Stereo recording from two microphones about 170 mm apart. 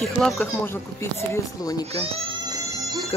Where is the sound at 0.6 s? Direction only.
15° left (ahead or behind).